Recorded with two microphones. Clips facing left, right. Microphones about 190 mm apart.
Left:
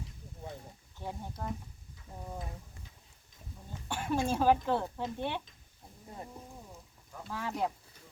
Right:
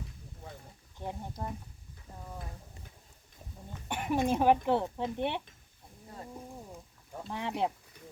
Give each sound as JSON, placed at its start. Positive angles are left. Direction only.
{"t": 0.9, "sound": "speech", "side_deg": -15}
{"t": 3.8, "sound": "speech", "side_deg": -20}
{"t": 7.3, "sound": "speech", "side_deg": -25}